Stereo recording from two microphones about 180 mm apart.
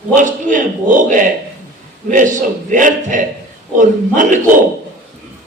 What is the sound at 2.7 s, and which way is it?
A man's voice, 45° right (ahead or behind).